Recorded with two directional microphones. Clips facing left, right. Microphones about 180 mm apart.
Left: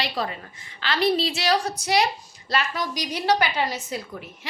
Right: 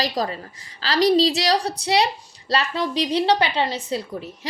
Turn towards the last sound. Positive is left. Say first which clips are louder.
# right 5 dB
turn(degrees=-30)  # may be behind; listen again after turning